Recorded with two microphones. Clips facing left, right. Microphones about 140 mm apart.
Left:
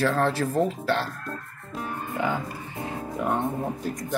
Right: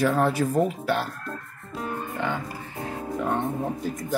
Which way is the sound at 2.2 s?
5° left (ahead or behind).